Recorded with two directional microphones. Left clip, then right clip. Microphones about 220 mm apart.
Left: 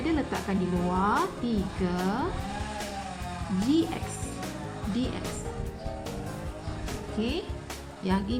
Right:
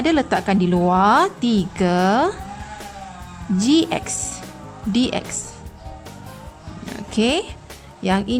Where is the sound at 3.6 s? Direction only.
50° right (ahead or behind).